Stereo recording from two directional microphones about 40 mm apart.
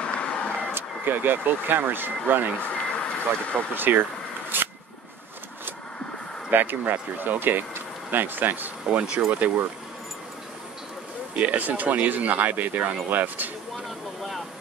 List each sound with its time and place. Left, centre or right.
0.0 s vehicle: left
0.7 s speech: right
2.5 s a sound: left
3.7 s speech: right
4.5 s a sound: right
6.5 s speech: right
8.8 s speech: right
11.3 s speech: right
13.8 s vehicle: centre